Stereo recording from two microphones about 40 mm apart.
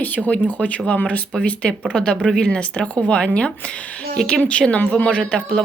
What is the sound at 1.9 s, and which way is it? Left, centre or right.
Speech, left.